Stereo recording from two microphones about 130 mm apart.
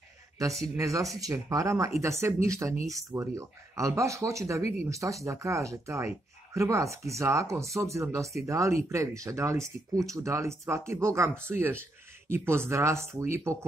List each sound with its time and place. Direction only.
0.4 s speech: 25° right (ahead or behind)